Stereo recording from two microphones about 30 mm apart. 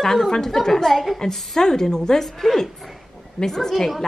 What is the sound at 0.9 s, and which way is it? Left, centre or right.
Speech, centre.